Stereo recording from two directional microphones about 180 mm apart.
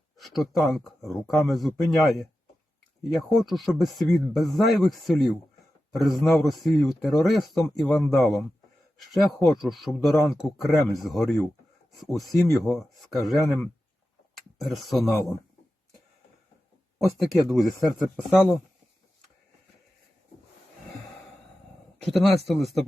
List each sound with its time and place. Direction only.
0.2 s speech: centre (ahead or behind)
14.6 s speech: centre (ahead or behind)
17.2 s speech: centre (ahead or behind)
22.0 s speech: centre (ahead or behind)